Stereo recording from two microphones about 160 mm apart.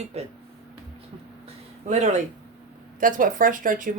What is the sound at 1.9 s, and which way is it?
Speech, 45° right (ahead or behind).